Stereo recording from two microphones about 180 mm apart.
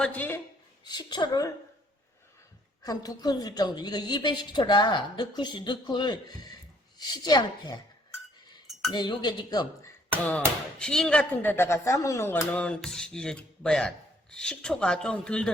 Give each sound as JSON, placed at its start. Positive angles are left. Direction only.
{"t": 0.0, "sound": "speech", "side_deg": 10}
{"t": 0.9, "sound": "a woman's voice", "side_deg": 25}
{"t": 2.8, "sound": "a woman's voice", "side_deg": 20}
{"t": 8.9, "sound": "a woman's voice", "side_deg": 25}
{"t": 10.2, "sound": "speech", "side_deg": 5}